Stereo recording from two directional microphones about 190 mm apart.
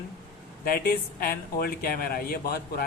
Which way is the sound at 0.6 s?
50° left (ahead or behind).